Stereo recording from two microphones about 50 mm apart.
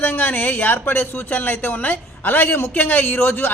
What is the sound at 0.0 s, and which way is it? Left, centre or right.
A man's voice, left.